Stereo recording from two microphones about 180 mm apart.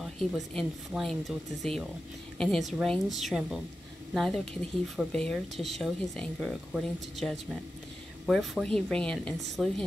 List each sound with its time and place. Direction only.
0.2 s speech: centre (ahead or behind)